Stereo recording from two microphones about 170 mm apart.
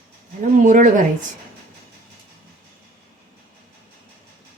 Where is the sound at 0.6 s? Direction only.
50° right (ahead or behind).